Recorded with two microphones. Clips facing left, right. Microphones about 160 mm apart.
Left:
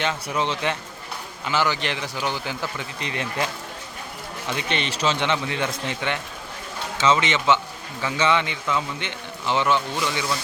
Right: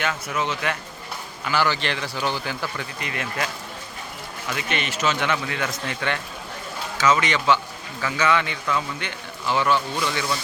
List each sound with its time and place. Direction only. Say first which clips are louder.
0.0 s speech: left 1 dB; 30° left (ahead or behind)